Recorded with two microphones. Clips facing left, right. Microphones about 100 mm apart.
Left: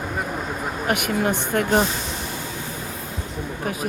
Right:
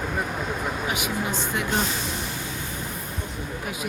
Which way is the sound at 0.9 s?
55° left (ahead or behind).